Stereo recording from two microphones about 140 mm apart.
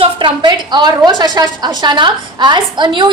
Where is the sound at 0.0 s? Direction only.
35° right (ahead or behind).